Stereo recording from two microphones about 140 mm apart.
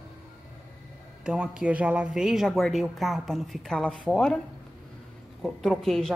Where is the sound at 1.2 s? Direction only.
5° right (ahead or behind).